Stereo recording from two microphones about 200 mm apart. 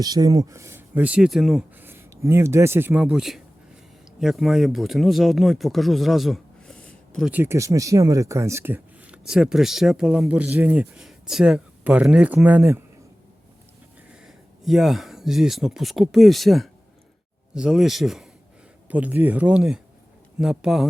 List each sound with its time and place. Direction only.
0.0 s speech: 20° right (ahead or behind); by 7.3 s 5° left (ahead or behind)
7.3 s speech: 10° right (ahead or behind)
14.3 s speech: centre (ahead or behind)